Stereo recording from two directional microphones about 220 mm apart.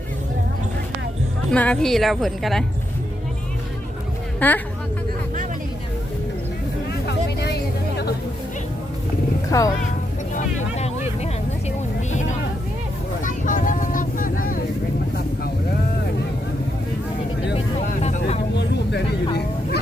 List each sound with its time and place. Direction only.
1.5 s a woman's voice: 5° left (ahead or behind)
4.4 s a woman's voice: 10° left (ahead or behind)
7.1 s vehicle: 50° left (ahead or behind)
9.5 s speech: 15° left (ahead or behind)
10.3 s a sound: 30° left (ahead or behind)
13.2 s vehicle: 35° left (ahead or behind)
17.7 s vehicle: 30° left (ahead or behind)
18.5 s vehicle: 50° left (ahead or behind)